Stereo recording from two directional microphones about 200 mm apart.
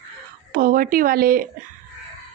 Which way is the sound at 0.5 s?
45° right (ahead or behind).